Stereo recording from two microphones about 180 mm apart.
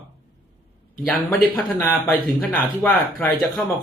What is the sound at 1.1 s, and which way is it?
Speech, 10° left (ahead or behind).